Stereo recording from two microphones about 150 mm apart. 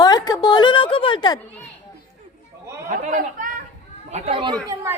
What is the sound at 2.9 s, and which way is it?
Speech, 60° right (ahead or behind).